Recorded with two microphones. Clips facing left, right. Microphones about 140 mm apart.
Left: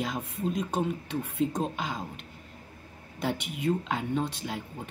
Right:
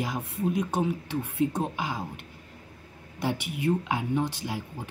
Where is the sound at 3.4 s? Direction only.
70° right (ahead or behind).